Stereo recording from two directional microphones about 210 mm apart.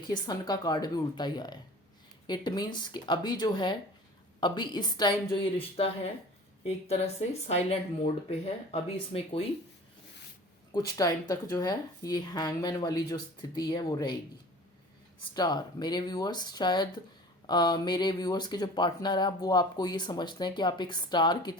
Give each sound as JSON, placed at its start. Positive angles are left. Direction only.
{"t": 0.0, "sound": "speech", "side_deg": 20}
{"t": 10.8, "sound": "speech", "side_deg": 20}
{"t": 15.3, "sound": "speech", "side_deg": 20}